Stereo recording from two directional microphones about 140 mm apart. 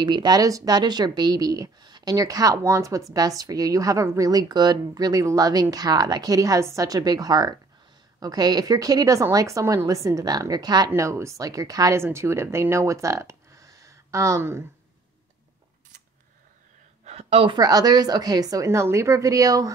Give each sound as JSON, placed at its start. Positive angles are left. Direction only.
{"t": 0.0, "sound": "a woman's voice", "side_deg": -30}
{"t": 17.0, "sound": "a sound", "side_deg": -50}
{"t": 17.6, "sound": "a woman's voice", "side_deg": -30}